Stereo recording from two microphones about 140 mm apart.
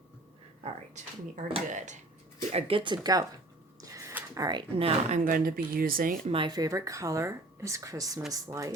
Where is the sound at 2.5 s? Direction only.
45° right (ahead or behind); by 3.3 s 30° right (ahead or behind).